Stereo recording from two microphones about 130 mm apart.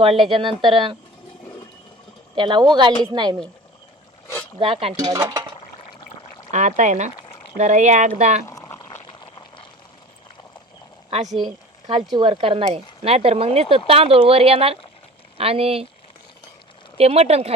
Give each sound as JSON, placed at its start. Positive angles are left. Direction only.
{"t": 0.0, "sound": "speech", "side_deg": -45}
{"t": 2.3, "sound": "speech", "side_deg": -35}
{"t": 4.6, "sound": "speech", "side_deg": -50}
{"t": 4.9, "sound": "speech", "side_deg": -30}
{"t": 6.5, "sound": "speech", "side_deg": -70}
{"t": 8.4, "sound": "boiling", "side_deg": 20}
{"t": 9.0, "sound": "boiling", "side_deg": 40}
{"t": 11.1, "sound": "speech", "side_deg": -60}
{"t": 12.1, "sound": "speech", "side_deg": -45}
{"t": 17.0, "sound": "speech", "side_deg": -55}